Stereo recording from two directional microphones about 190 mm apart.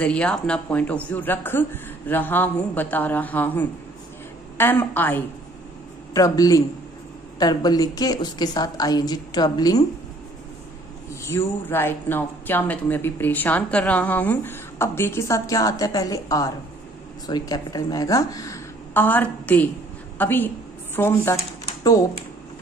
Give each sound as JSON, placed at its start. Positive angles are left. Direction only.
{"t": 0.0, "sound": "a woman's voice", "side_deg": 5}
{"t": 11.2, "sound": "a woman's voice", "side_deg": 15}